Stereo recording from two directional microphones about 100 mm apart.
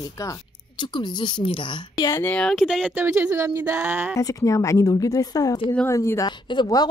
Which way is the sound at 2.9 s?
20° right (ahead or behind).